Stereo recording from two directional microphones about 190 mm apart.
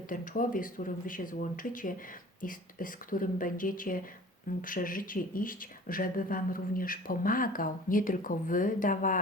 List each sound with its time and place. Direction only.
0.1 s speech: 45° left (ahead or behind)